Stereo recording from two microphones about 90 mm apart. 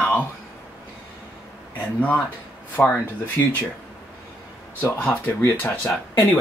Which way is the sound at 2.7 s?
20° left (ahead or behind).